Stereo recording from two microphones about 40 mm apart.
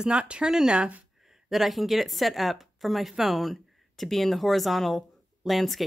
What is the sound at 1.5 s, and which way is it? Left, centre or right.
A woman's voice, centre.